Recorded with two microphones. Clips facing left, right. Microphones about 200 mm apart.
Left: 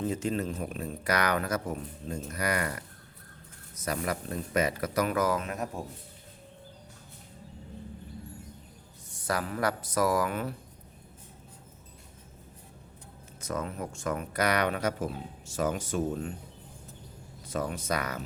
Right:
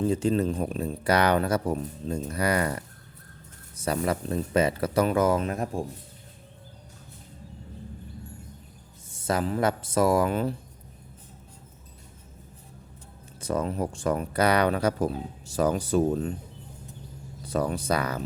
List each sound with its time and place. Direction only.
0.0 s speech: 30° right (ahead or behind)
9.0 s speech: 25° right (ahead or behind)
13.4 s speech: 30° right (ahead or behind)
17.4 s speech: 35° right (ahead or behind)